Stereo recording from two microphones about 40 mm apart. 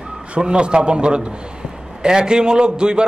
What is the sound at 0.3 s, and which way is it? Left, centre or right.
A man's voice, right.